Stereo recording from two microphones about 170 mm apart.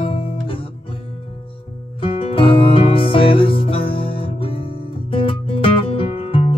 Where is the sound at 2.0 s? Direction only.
35° left (ahead or behind).